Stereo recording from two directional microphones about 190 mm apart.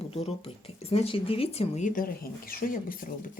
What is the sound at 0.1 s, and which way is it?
Speech, 35° left (ahead or behind).